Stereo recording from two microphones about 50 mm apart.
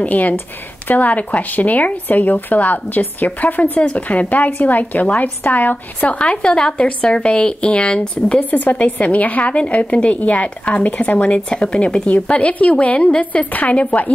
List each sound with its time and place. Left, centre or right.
0.0 s a woman's voice: left
6.2 s a woman's voice: centre
8.5 s a woman's voice: left